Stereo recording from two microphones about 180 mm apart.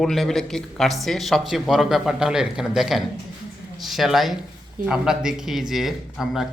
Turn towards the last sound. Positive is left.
turn(degrees=0)  # may be behind; listen again after turning